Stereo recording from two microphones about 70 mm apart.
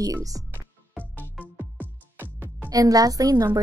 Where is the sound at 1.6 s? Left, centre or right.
Right.